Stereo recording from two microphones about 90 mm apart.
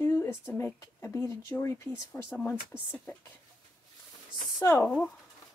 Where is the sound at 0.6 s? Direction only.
30° left (ahead or behind).